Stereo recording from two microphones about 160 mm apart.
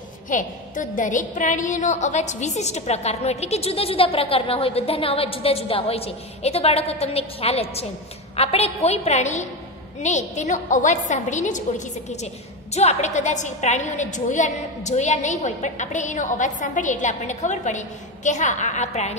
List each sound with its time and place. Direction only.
0.3 s a woman's voice: 55° left (ahead or behind)
12.7 s a woman's voice: 45° left (ahead or behind)